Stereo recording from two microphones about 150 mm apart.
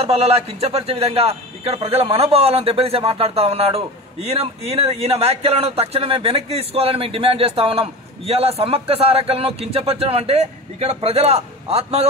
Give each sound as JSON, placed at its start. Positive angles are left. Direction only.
{"t": 0.0, "sound": "speech", "side_deg": -40}